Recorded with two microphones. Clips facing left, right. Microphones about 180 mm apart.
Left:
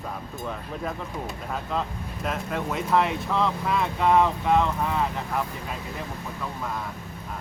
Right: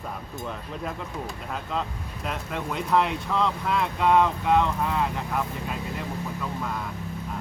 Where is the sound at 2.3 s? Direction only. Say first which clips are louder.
Left 2 dB; centre (ahead or behind).